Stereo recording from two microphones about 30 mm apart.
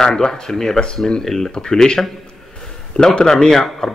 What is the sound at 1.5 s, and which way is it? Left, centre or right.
A man's voice, left.